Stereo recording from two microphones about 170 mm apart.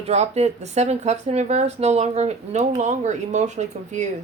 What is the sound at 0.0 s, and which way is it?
Speech, 40° right (ahead or behind).